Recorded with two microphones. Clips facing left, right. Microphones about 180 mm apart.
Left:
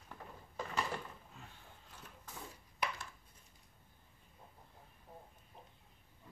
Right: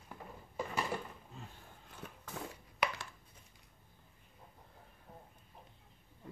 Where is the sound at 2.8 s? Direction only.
75° right (ahead or behind).